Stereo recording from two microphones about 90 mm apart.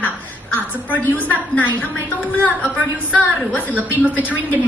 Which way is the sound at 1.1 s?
20° left (ahead or behind).